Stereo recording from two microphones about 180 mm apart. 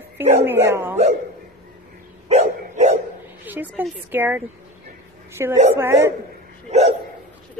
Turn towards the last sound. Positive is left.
turn(degrees=-35)  # may be behind; listen again after turning